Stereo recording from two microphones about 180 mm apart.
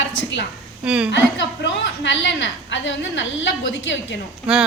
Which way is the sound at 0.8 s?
5° right (ahead or behind).